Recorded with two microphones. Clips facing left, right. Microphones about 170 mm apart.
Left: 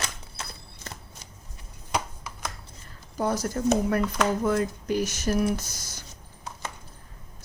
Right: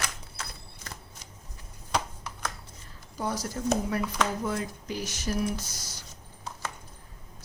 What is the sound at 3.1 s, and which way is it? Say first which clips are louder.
Speech: left 5 dB; 55° left (ahead or behind).